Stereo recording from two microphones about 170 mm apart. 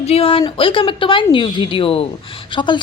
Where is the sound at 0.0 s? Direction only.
35° left (ahead or behind).